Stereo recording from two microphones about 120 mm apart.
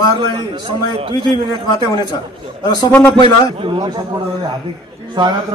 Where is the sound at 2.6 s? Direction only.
35° left (ahead or behind).